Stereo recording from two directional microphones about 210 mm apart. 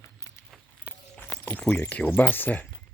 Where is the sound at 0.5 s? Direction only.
5° left (ahead or behind).